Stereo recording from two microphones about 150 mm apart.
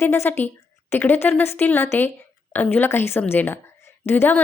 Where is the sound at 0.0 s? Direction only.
15° left (ahead or behind).